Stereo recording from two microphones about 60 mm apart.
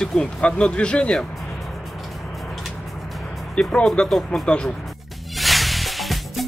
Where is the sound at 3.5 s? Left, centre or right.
Centre.